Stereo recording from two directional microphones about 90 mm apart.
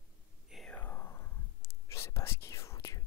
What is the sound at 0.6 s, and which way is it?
Whispering, 20° left (ahead or behind).